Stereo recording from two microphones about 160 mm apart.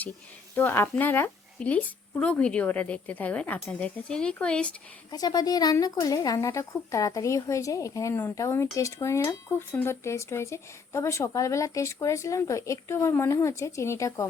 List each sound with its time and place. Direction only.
0.5 s a woman's voice: 15° left (ahead or behind)
5.1 s a woman's voice: 25° left (ahead or behind)